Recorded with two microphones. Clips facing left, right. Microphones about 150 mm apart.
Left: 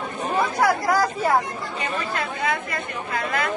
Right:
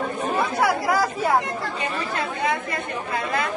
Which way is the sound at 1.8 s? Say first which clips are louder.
Left 3 dB; 20° right (ahead or behind).